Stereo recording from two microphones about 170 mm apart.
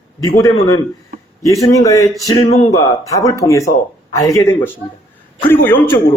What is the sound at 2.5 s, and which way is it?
Speech, 35° left (ahead or behind).